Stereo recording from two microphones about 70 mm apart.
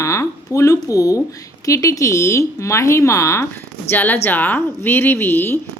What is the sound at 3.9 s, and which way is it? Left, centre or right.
A woman's voice, left.